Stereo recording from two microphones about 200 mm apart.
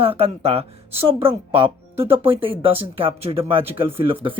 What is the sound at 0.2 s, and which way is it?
Speech, 30° right (ahead or behind).